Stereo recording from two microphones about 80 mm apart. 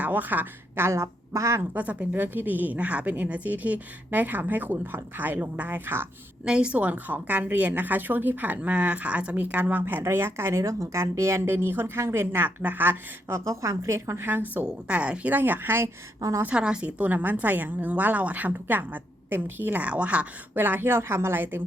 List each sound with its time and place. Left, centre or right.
0.0 s a woman's voice: right
0.9 s a woman's voice: right
1.7 s a woman's voice: centre
6.4 s a woman's voice: centre; by 14.3 s right
14.5 s a woman's voice: centre
16.4 s a woman's voice: centre
20.6 s a woman's voice: right